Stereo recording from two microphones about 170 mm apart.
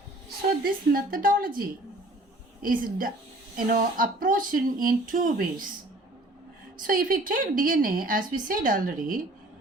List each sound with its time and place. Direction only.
0.6 s a woman's voice: 60° right (ahead or behind)
6.7 s a woman's voice: 55° right (ahead or behind)